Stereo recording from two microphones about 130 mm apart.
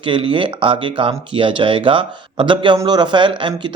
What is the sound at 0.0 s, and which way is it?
Speech, 40° right (ahead or behind).